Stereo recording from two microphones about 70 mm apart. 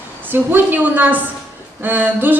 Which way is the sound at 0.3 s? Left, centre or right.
Right.